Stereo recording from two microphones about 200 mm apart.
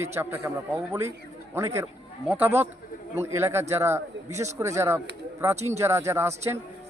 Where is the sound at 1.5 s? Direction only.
15° right (ahead or behind).